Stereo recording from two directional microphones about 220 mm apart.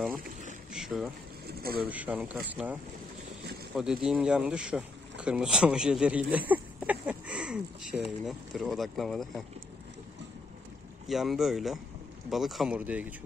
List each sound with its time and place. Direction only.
0.7 s a sound: centre (ahead or behind)
1.5 s speech: 45° right (ahead or behind)
1.9 s speech: 5° right (ahead or behind)
11.1 s speech: centre (ahead or behind)